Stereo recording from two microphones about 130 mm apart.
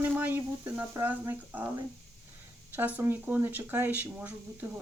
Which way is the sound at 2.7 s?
15° right (ahead or behind).